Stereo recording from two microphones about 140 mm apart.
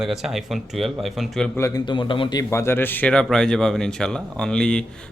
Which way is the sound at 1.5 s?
20° left (ahead or behind).